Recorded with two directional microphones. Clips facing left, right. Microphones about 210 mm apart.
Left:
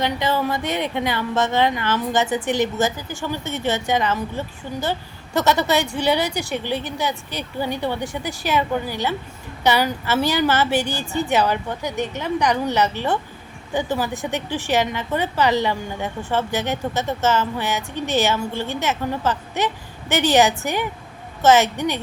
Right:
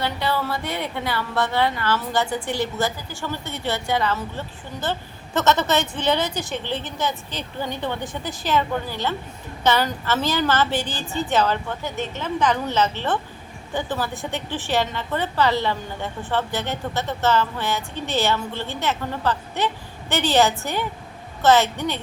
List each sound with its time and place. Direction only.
0.0 s speech: 15° left (ahead or behind)